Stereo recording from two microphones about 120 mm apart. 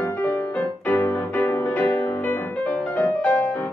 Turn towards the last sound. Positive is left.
turn(degrees=20)  # may be behind; listen again after turning